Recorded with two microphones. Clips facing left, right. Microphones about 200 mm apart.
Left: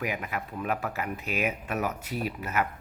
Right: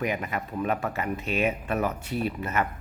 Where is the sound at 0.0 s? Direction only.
5° left (ahead or behind).